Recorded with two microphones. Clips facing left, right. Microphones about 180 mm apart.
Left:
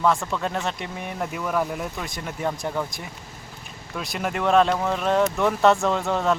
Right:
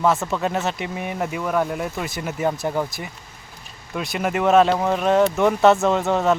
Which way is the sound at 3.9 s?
Centre (ahead or behind).